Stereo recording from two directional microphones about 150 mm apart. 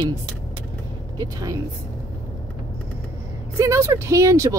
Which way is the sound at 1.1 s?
25° right (ahead or behind).